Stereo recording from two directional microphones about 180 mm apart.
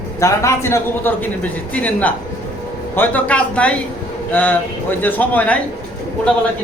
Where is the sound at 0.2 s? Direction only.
15° left (ahead or behind).